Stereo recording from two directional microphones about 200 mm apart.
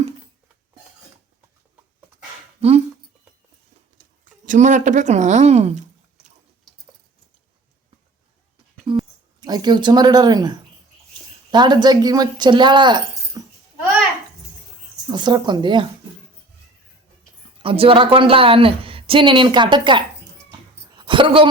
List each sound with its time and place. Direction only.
2.6 s speech: 30° right (ahead or behind)
4.4 s a woman's voice: 40° right (ahead or behind)
8.9 s a sound: 25° right (ahead or behind)
9.4 s a woman's voice: 20° right (ahead or behind)
15.0 s a woman's voice: 20° right (ahead or behind)
17.6 s a woman's voice: 25° right (ahead or behind)
20.9 s a sound: 25° right (ahead or behind)